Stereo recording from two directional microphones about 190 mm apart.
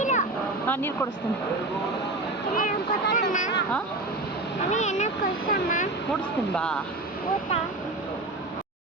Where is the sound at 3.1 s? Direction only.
40° left (ahead or behind).